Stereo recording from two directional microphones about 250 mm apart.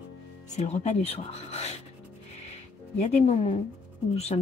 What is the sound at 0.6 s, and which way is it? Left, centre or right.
Speech, left.